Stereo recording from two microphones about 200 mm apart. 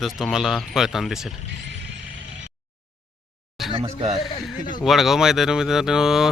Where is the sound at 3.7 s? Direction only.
25° right (ahead or behind).